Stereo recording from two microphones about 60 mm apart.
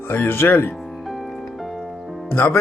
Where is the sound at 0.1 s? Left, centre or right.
Left.